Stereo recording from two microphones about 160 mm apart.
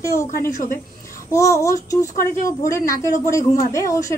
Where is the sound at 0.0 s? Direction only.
15° left (ahead or behind).